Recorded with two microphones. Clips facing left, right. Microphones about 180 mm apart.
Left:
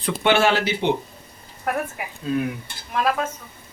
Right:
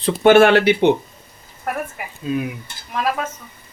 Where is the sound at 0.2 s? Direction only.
50° right (ahead or behind).